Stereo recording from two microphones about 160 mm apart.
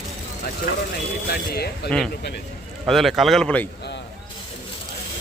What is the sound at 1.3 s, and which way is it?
Speech, 80° left.